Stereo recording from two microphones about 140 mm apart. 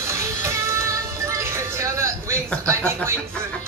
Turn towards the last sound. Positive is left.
turn(degrees=-20)  # may be behind; listen again after turning